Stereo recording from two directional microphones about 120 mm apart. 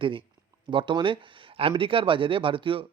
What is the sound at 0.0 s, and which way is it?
Speech, 45° right (ahead or behind).